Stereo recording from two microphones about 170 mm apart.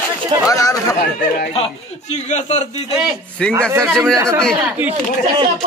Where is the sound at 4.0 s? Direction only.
15° right (ahead or behind).